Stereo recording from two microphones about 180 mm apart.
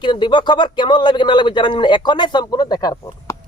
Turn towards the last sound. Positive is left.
turn(degrees=20)  # may be behind; listen again after turning